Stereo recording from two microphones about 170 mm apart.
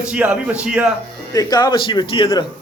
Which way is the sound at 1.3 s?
25° left (ahead or behind).